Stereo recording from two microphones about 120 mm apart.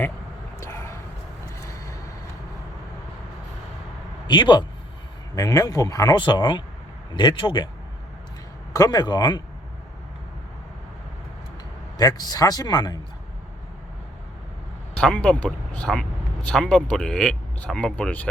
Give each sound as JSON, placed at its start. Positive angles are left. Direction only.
{"t": 0.6, "sound": "a sound", "side_deg": 25}
{"t": 1.5, "sound": "vehicle", "side_deg": 25}
{"t": 4.3, "sound": "a man's voice", "side_deg": 40}
{"t": 5.3, "sound": "speech", "side_deg": 30}
{"t": 6.1, "sound": "a man's voice", "side_deg": 40}
{"t": 8.7, "sound": "a man's voice", "side_deg": 30}
{"t": 11.9, "sound": "a man's voice", "side_deg": 30}
{"t": 14.9, "sound": "speech", "side_deg": 10}